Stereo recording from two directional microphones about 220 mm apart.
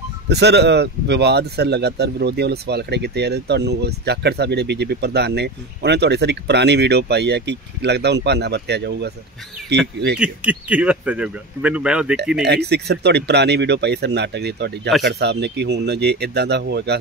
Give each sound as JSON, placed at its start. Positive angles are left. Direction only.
{"t": 0.3, "sound": "speech", "side_deg": -50}
{"t": 10.1, "sound": "speech", "side_deg": -5}
{"t": 12.4, "sound": "speech", "side_deg": -50}